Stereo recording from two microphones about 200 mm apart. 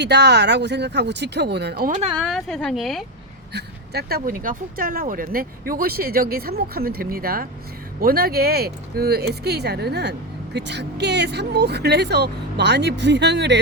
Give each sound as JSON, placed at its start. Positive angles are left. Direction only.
{"t": 0.0, "sound": "speech", "side_deg": -55}
{"t": 2.2, "sound": "a woman's voice", "side_deg": 0}
{"t": 3.5, "sound": "speech", "side_deg": -50}